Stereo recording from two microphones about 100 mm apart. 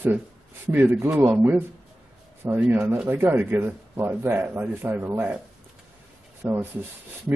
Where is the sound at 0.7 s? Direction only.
25° right (ahead or behind).